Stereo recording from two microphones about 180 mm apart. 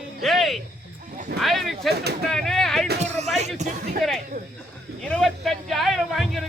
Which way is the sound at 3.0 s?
40° right (ahead or behind).